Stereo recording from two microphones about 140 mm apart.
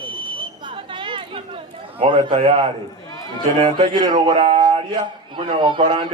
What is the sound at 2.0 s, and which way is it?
Speech, 35° right (ahead or behind).